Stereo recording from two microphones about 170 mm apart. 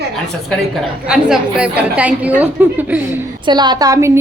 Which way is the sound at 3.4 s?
25° right (ahead or behind).